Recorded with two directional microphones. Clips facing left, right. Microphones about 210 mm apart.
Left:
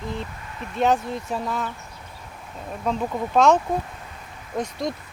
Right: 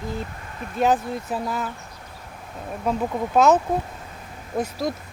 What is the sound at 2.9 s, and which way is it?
Speech, 5° right (ahead or behind).